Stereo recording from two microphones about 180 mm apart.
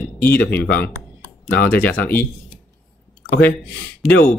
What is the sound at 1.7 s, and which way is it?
Speech, 10° left (ahead or behind).